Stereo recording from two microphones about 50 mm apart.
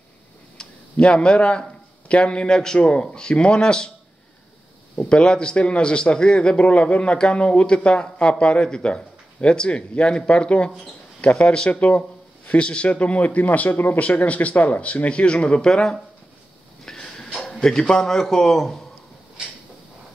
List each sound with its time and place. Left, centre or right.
0.6 s a man's voice: left
5.1 s speech: centre
11.4 s a man's voice: centre
11.7 s speech: left
16.8 s a sound: centre
17.5 s a man's voice: centre